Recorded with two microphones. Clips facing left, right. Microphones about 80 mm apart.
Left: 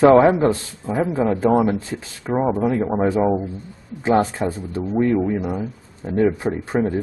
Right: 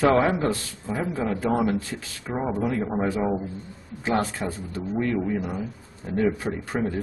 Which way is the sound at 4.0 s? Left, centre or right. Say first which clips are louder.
Left 7 dB; left.